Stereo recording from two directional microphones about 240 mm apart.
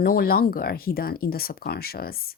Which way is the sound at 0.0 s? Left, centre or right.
Left.